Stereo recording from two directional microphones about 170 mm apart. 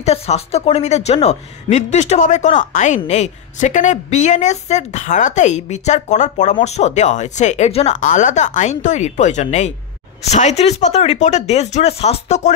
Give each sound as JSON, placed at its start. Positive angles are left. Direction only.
{"t": 0.0, "sound": "speech", "side_deg": 40}